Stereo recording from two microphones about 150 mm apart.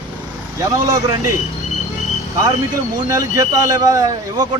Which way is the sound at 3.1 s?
25° right (ahead or behind).